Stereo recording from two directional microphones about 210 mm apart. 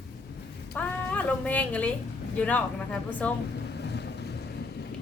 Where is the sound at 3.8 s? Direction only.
50° left (ahead or behind).